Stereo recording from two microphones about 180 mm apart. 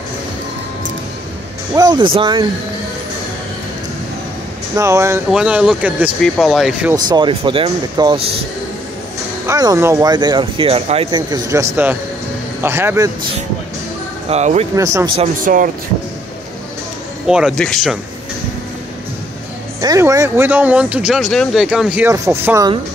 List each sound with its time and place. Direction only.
1.8 s speech: 25° right (ahead or behind)
4.7 s speech: 15° right (ahead or behind)
7.1 s speech: 25° right (ahead or behind)
9.5 s speech: 20° right (ahead or behind)
14.3 s speech: 35° right (ahead or behind)
14.8 s speech: 20° right (ahead or behind)
15.3 s speech: 50° right (ahead or behind)
17.3 s speech: centre (ahead or behind)
19.8 s speech: 20° right (ahead or behind)